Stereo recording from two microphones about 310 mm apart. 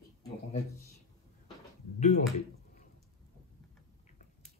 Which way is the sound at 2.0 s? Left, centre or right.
Left.